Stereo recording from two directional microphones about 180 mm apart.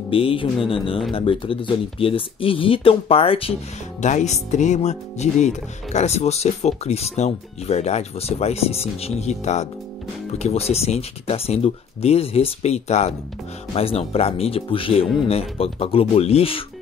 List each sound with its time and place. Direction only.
0.1 s speech: 30° left (ahead or behind)